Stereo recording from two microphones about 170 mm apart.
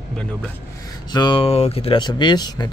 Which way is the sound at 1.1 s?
30° left (ahead or behind).